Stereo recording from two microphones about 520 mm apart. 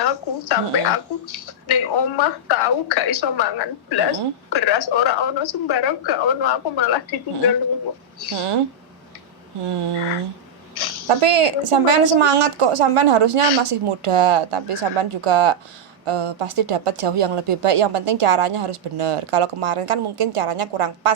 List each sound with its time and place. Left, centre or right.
0.0 s a woman's voice: left
8.4 s speech: right
11.1 s speech: right